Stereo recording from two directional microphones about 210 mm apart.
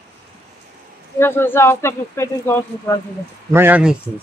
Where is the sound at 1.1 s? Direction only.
10° left (ahead or behind).